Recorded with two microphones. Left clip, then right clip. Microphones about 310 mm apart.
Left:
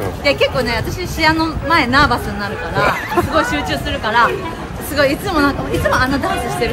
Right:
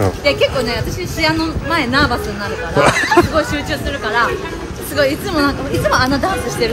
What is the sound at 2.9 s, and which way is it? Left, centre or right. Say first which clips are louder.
Speech: right 7 dB; right.